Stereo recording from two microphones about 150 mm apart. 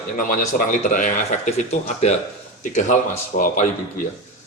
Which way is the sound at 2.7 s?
60° left (ahead or behind).